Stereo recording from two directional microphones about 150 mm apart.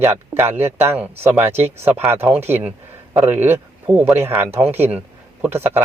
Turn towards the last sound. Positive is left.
turn(degrees=-15)  # may be behind; listen again after turning